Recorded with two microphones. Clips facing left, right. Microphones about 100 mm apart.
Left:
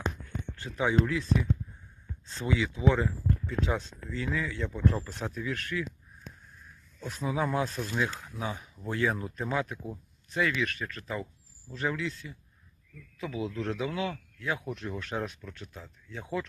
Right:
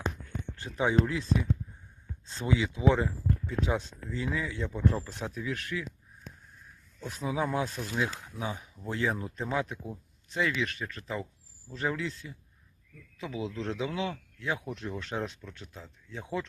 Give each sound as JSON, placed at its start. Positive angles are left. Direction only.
{"t": 0.6, "sound": "speech", "side_deg": -25}
{"t": 7.1, "sound": "speech", "side_deg": -15}
{"t": 11.7, "sound": "speech", "side_deg": -35}
{"t": 13.1, "sound": "speech", "side_deg": -20}
{"t": 15.1, "sound": "speech", "side_deg": 0}
{"t": 15.4, "sound": "speech", "side_deg": -20}